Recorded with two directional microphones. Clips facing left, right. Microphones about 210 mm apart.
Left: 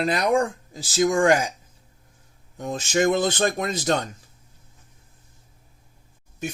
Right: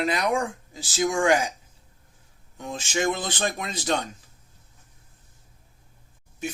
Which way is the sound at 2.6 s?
40° left (ahead or behind).